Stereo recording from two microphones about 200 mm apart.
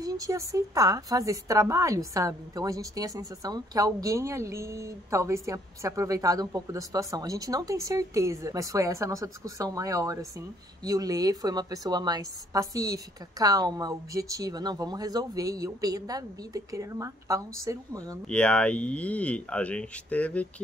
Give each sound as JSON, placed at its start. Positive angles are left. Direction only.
{"t": 0.0, "sound": "a woman's voice", "side_deg": -15}
{"t": 18.3, "sound": "speech", "side_deg": 5}